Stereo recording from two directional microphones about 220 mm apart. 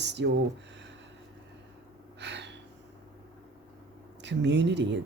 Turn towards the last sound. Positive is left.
turn(degrees=-55)  # may be behind; listen again after turning